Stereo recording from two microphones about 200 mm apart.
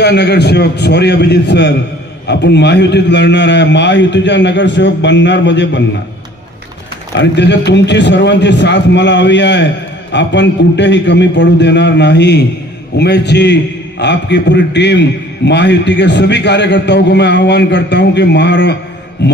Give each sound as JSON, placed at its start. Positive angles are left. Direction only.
{"t": 0.0, "sound": "a man's voice", "side_deg": 55}
{"t": 7.2, "sound": "a man's voice", "side_deg": 60}